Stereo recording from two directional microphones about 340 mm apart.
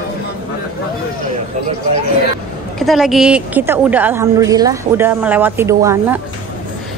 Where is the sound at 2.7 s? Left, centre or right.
Centre.